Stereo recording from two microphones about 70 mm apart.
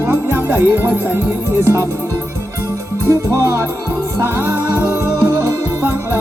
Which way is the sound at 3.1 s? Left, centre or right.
Right.